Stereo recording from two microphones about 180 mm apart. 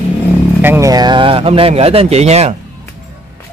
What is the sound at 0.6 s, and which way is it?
Speech, 15° right (ahead or behind).